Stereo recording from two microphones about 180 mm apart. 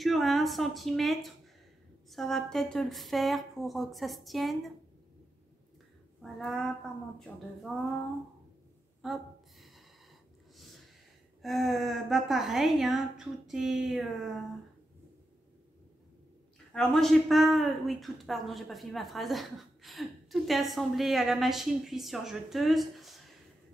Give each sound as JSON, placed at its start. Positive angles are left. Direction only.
{"t": 0.0, "sound": "speech", "side_deg": 0}
{"t": 6.2, "sound": "speech", "side_deg": 0}
{"t": 9.0, "sound": "a sound", "side_deg": 0}
{"t": 11.4, "sound": "speech", "side_deg": 0}
{"t": 16.7, "sound": "speech", "side_deg": 0}